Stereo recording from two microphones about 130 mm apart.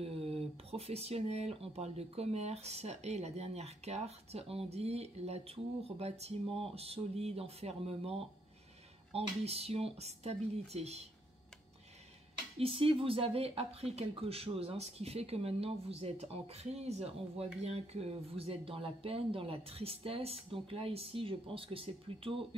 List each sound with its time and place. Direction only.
0.0 s speech: 50° right (ahead or behind)
12.5 s speech: 45° right (ahead or behind)